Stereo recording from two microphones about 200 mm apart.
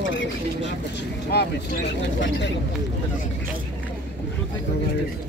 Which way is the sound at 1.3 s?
55° left (ahead or behind).